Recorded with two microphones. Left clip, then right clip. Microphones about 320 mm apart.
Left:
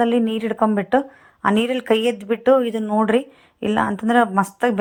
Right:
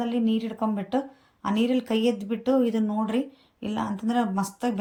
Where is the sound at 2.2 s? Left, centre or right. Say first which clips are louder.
Left 10 dB; left.